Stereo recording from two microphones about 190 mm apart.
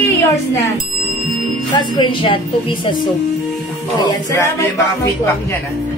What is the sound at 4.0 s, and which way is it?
Speech, 20° left (ahead or behind).